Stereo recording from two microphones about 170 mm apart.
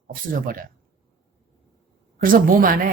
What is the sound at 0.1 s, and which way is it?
Speech, 55° right (ahead or behind).